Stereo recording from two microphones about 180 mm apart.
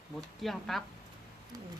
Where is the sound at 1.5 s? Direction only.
20° right (ahead or behind).